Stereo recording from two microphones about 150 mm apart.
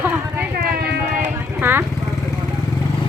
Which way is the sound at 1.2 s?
15° right (ahead or behind).